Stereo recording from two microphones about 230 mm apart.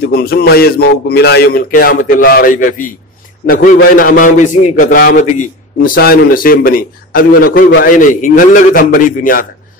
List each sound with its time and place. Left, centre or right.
0.0 s a man's voice: left